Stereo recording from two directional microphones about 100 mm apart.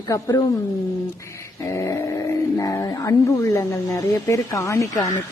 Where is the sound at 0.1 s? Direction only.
35° left (ahead or behind).